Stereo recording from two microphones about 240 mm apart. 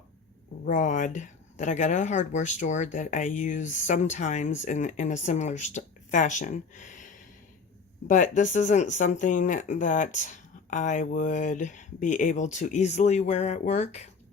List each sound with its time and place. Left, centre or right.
0.6 s speech: left